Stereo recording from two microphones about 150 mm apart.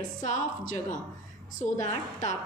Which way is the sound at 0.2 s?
55° left (ahead or behind).